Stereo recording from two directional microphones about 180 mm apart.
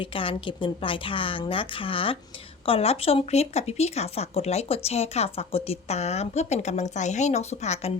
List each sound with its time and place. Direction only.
0.0 s a woman's voice: 30° left (ahead or behind)